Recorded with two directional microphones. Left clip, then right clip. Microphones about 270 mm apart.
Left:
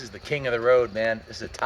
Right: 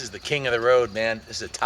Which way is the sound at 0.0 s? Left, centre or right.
Centre.